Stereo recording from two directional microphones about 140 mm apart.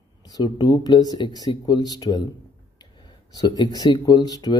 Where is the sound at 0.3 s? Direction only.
30° left (ahead or behind).